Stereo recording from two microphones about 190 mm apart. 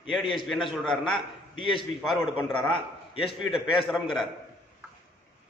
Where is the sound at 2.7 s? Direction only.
30° left (ahead or behind).